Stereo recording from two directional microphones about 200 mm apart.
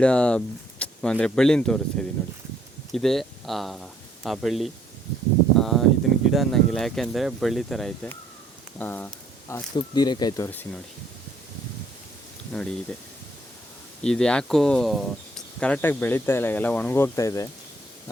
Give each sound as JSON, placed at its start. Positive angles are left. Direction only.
{"t": 0.0, "sound": "speech", "side_deg": 5}
{"t": 9.7, "sound": "speech", "side_deg": 20}
{"t": 12.5, "sound": "speech", "side_deg": 5}
{"t": 14.0, "sound": "speech", "side_deg": 5}